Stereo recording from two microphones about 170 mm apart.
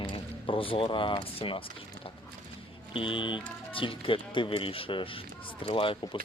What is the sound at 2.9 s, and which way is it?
Speech, 30° left (ahead or behind).